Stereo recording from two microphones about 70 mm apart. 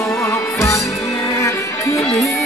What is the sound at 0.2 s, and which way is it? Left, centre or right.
Music, left.